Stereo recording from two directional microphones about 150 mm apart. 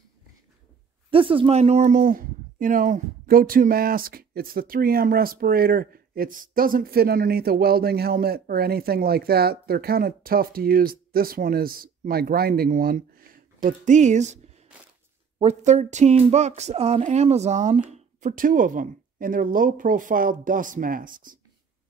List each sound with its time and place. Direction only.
1.1 s speech: 35° right (ahead or behind); by 21.4 s 65° right (ahead or behind)